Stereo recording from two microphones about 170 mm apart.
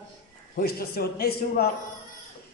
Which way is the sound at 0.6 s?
65° left (ahead or behind).